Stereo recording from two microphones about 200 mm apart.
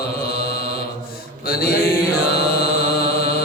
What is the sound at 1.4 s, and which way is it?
Mantra, 50° left (ahead or behind).